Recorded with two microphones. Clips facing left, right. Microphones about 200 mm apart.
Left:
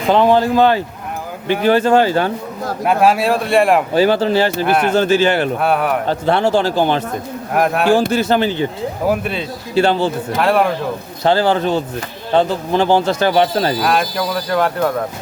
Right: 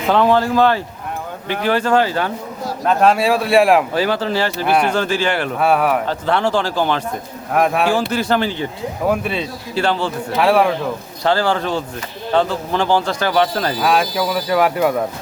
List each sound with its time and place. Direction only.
0.1 s speech: 20° left (ahead or behind)
2.8 s speech: 10° left (ahead or behind)
3.9 s speech: 25° left (ahead or behind)
4.6 s speech: centre (ahead or behind)
4.9 s speech: 25° left (ahead or behind)
5.5 s speech: centre (ahead or behind)
6.1 s speech: 25° left (ahead or behind)
7.5 s speech: centre (ahead or behind)
8.1 s speech: 25° left (ahead or behind)
9.0 s speech: centre (ahead or behind)
9.7 s speech: 25° left (ahead or behind)
10.3 s speech: centre (ahead or behind)
11.2 s speech: 25° left (ahead or behind)
13.7 s speech: centre (ahead or behind)